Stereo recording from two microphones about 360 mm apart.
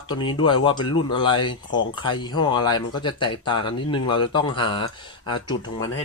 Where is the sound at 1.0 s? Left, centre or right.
Centre.